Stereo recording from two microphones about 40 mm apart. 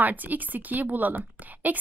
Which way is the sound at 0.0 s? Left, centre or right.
Right.